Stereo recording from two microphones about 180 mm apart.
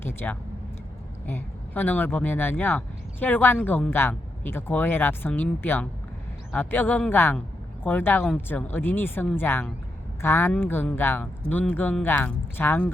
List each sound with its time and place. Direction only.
0.0 s speech: 10° left (ahead or behind)